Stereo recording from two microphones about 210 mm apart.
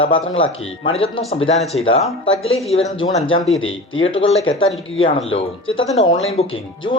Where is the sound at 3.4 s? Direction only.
70° left (ahead or behind).